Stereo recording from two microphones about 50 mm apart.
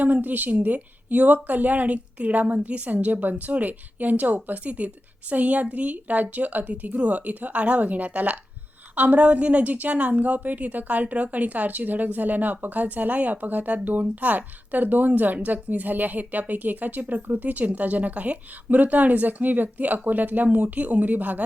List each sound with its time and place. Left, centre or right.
0.0 s a woman's voice: right